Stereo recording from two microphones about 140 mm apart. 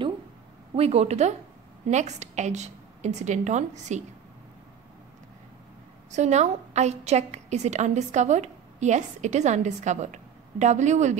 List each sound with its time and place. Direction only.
0.7 s a woman's voice: 45° right (ahead or behind)
6.1 s a woman's voice: 55° right (ahead or behind)